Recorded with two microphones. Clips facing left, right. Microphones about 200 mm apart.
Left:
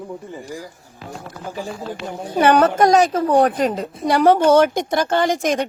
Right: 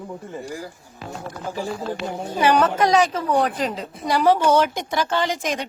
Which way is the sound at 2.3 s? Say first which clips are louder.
Left 4 dB; 60° left (ahead or behind).